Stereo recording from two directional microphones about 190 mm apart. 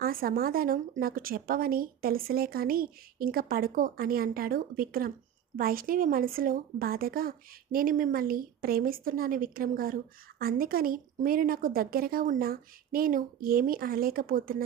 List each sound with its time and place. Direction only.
0.0 s a woman's voice: 50° right (ahead or behind)